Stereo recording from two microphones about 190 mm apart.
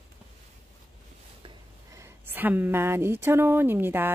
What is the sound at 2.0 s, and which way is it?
A woman's voice, 10° right (ahead or behind).